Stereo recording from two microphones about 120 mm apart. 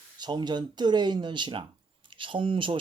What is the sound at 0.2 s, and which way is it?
Speech, 40° right (ahead or behind).